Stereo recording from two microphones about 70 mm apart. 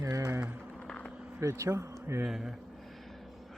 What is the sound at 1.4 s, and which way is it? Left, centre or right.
Speech, right.